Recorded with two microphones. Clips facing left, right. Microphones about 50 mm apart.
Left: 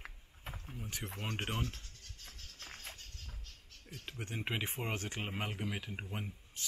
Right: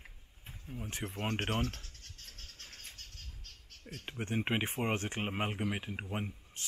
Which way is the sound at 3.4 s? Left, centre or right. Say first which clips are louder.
Right 3 dB; right.